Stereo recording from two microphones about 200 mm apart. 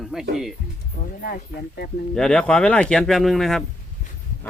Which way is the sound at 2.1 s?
5° left (ahead or behind).